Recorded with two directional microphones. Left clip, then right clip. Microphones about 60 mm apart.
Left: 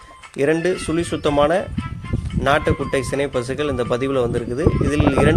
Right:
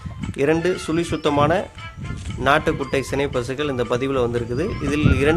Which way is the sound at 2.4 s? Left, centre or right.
Centre.